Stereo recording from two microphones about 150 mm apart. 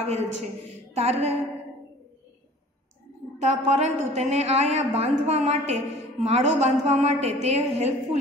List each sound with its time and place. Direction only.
0.0 s a woman's voice: 45° right (ahead or behind)
3.3 s a woman's voice: 45° right (ahead or behind)